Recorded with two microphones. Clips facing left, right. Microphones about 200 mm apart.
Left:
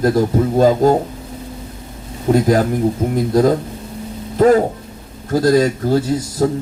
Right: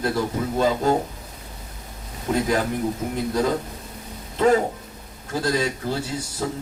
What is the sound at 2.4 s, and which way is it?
A man's voice, 40° left (ahead or behind).